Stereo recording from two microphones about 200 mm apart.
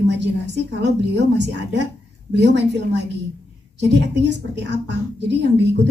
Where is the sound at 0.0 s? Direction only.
60° right (ahead or behind).